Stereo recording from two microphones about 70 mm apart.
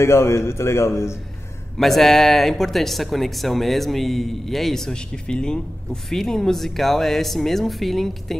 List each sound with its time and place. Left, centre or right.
0.0 s a man's voice: left
1.8 s speech: centre